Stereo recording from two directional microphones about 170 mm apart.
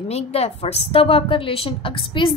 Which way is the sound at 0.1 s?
35° left (ahead or behind).